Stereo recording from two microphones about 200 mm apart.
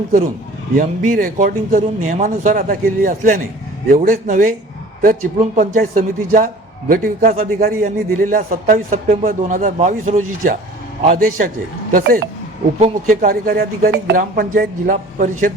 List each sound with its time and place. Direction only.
0.8 s a man's voice: 45° right (ahead or behind)